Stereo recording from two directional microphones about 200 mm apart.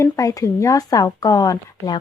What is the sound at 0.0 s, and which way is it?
Speech, 15° left (ahead or behind).